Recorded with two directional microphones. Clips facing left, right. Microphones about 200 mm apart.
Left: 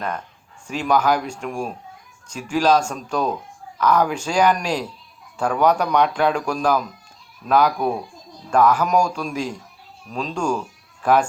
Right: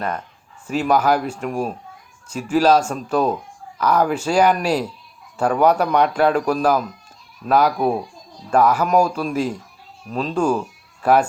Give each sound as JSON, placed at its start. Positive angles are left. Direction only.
{"t": 0.7, "sound": "speech", "side_deg": -5}